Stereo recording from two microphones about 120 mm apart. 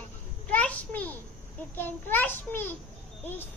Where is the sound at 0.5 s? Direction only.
10° left (ahead or behind).